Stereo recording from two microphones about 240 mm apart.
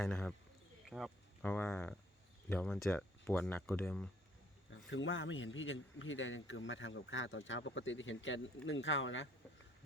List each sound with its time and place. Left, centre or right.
0.0 s speech: centre
4.7 s a man's voice: left